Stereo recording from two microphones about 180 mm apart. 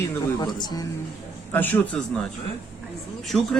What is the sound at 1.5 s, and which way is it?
Speech, 10° left (ahead or behind).